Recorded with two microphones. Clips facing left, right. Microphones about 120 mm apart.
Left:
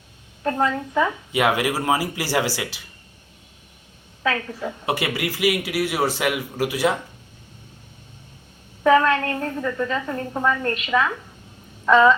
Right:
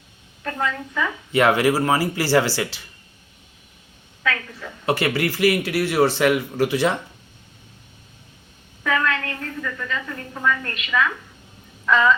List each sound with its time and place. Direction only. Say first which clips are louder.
0.4 s a woman's voice: left 4 dB; 30° left (ahead or behind)
1.3 s a man's voice: right 3 dB; 15° left (ahead or behind)
4.2 s a woman's voice: left 3 dB; 30° left (ahead or behind)
4.9 s a man's voice: right 4 dB; 15° left (ahead or behind)
8.8 s a woman's voice: left 7 dB; 30° left (ahead or behind)
11.9 s a sound: left 4 dB; 35° left (ahead or behind)